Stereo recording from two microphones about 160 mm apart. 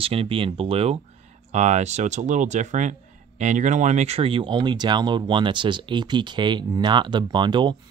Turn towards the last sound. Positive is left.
turn(degrees=-30)  # may be behind; listen again after turning